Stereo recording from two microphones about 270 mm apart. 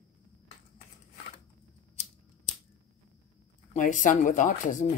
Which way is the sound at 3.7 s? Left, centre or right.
Left.